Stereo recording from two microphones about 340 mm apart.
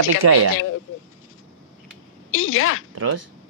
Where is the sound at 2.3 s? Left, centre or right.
Left.